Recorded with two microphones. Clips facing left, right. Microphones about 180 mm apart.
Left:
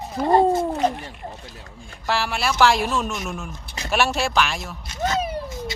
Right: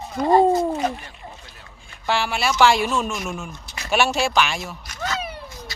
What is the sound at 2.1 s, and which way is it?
Speech, centre (ahead or behind).